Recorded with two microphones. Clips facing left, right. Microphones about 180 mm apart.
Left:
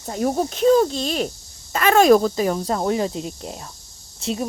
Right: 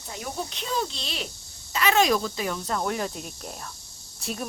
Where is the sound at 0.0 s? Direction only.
40° left (ahead or behind).